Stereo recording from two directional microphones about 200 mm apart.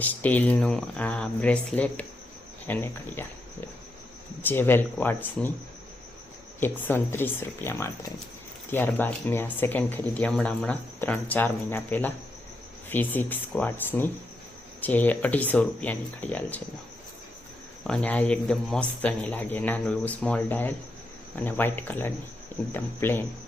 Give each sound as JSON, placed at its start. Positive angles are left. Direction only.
{"t": 0.0, "sound": "speech", "side_deg": 10}
{"t": 4.4, "sound": "speech", "side_deg": 10}
{"t": 6.6, "sound": "speech", "side_deg": 10}
{"t": 17.8, "sound": "speech", "side_deg": 5}